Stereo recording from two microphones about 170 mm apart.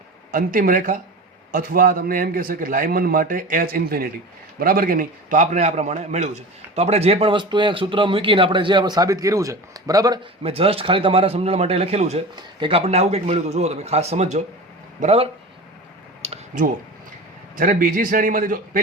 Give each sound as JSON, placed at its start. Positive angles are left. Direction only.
{"t": 0.3, "sound": "a man's voice", "side_deg": -55}
{"t": 10.4, "sound": "a man's voice", "side_deg": -35}
{"t": 16.2, "sound": "a sound", "side_deg": -40}
{"t": 17.6, "sound": "a man's voice", "side_deg": -55}